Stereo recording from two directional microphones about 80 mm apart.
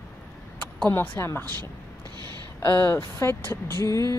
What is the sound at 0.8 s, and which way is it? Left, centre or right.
Speech, left.